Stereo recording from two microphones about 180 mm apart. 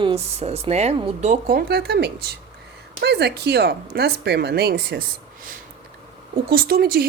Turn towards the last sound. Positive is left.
turn(degrees=-55)  # may be behind; listen again after turning